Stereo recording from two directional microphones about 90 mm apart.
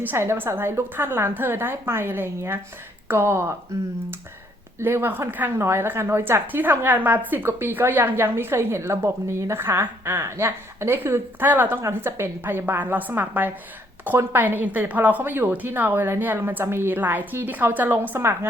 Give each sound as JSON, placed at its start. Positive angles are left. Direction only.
{"t": 0.0, "sound": "a woman's voice", "side_deg": -25}
{"t": 4.8, "sound": "a woman's voice", "side_deg": -25}